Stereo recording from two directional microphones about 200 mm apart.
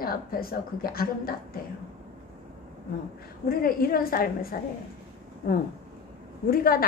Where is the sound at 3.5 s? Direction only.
50° left (ahead or behind).